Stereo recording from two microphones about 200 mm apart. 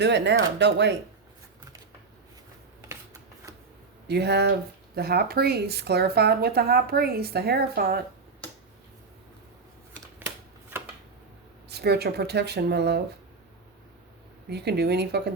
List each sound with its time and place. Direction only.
0.0 s speech: 60° right (ahead or behind)
2.9 s shuffling cards: 15° right (ahead or behind)
4.1 s a woman's voice: 55° right (ahead or behind)
10.2 s shuffling cards: 10° right (ahead or behind)
11.7 s speech: 55° right (ahead or behind)
14.5 s speech: 55° right (ahead or behind)